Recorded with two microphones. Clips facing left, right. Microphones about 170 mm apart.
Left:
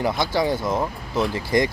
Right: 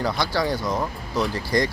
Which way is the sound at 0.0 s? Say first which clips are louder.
Left 2 dB; 20° left (ahead or behind).